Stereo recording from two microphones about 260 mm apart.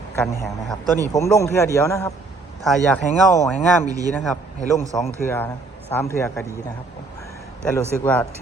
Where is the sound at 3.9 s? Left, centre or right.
Centre.